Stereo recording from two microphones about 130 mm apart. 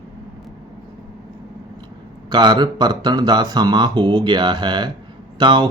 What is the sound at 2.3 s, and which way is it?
Speech, 35° right (ahead or behind).